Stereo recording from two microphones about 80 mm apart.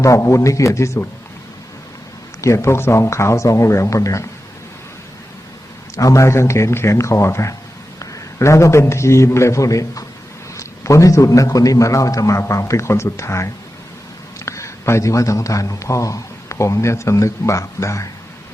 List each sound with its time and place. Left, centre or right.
0.0 s speech: left
2.4 s speech: left
6.0 s speech: left